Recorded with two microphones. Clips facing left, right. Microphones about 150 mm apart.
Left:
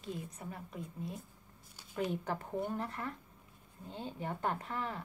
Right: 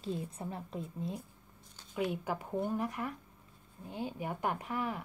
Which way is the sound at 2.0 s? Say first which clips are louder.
Right 1 dB; 10° right (ahead or behind).